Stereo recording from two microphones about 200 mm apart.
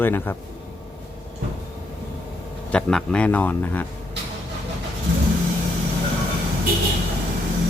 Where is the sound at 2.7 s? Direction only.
5° left (ahead or behind).